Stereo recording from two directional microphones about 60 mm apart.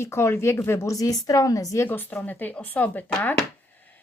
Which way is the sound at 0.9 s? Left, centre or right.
Left.